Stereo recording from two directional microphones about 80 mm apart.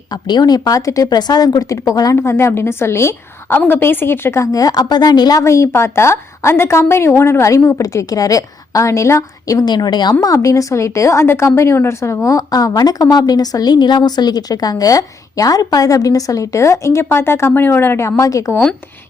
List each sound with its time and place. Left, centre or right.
0.1 s a woman's voice: left
1.1 s a woman's voice: left
2.1 s a woman's voice: left
4.5 s a woman's voice: left
5.4 s a woman's voice: left
9.6 s a woman's voice: left